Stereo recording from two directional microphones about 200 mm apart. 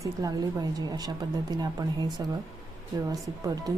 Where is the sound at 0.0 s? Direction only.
15° right (ahead or behind).